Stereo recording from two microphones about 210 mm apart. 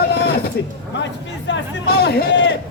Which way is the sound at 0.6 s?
50° left (ahead or behind).